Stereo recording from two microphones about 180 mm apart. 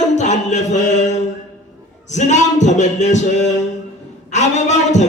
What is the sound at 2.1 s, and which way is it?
Speech, 40° left (ahead or behind).